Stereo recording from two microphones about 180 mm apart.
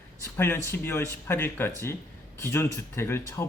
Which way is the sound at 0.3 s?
15° left (ahead or behind).